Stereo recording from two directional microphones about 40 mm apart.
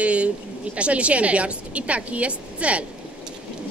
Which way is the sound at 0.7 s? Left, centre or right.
Right.